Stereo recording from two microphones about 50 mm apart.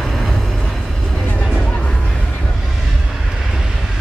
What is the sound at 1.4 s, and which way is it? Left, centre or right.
Music, centre.